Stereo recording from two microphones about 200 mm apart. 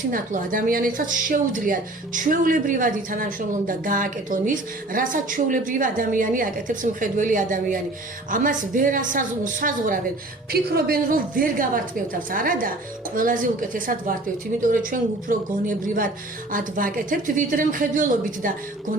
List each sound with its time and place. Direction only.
0.1 s speech: 45° right (ahead or behind)